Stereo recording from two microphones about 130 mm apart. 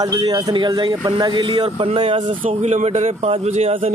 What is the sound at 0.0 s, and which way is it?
Speech, 30° right (ahead or behind).